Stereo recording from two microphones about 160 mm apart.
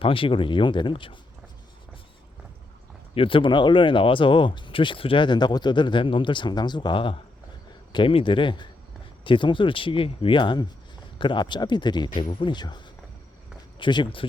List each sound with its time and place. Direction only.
0.0 s speech: 35° left (ahead or behind)
3.2 s speech: 35° left (ahead or behind)